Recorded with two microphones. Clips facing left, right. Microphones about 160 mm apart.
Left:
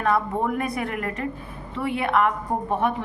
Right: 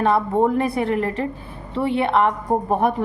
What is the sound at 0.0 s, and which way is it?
A woman's voice, 30° right (ahead or behind).